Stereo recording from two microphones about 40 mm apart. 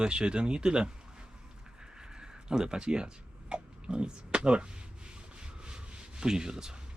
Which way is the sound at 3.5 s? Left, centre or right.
Right.